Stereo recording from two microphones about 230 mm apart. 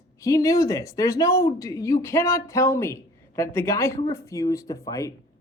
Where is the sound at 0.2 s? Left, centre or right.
Centre.